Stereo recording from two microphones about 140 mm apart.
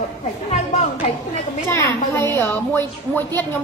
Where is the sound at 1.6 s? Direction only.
20° left (ahead or behind).